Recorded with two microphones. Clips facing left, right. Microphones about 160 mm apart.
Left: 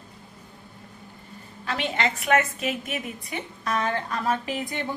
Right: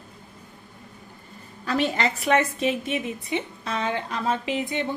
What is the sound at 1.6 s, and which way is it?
A woman's voice, 40° right (ahead or behind).